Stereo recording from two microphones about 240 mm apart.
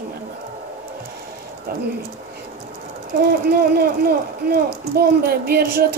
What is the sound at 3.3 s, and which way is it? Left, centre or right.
Speech, right.